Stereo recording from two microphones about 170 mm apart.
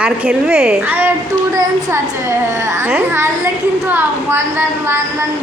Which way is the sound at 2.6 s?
15° right (ahead or behind).